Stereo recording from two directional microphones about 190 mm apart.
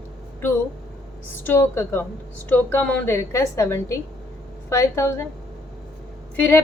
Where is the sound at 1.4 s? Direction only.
10° left (ahead or behind).